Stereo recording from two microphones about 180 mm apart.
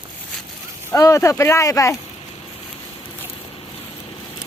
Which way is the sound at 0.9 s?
15° left (ahead or behind).